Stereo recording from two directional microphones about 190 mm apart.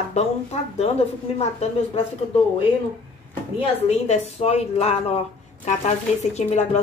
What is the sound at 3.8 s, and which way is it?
Speech, 35° left (ahead or behind).